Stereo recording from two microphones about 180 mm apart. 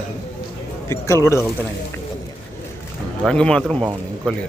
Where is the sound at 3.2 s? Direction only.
5° left (ahead or behind).